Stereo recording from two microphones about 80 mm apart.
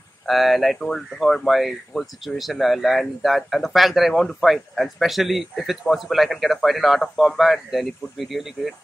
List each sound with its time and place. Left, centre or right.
0.3 s speech: centre